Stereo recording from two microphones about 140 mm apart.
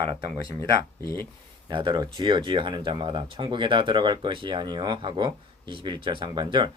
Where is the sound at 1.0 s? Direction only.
15° left (ahead or behind).